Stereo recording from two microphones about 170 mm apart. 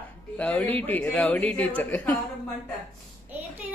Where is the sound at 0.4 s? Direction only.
10° left (ahead or behind).